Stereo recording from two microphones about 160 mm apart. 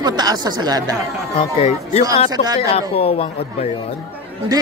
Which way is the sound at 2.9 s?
35° left (ahead or behind).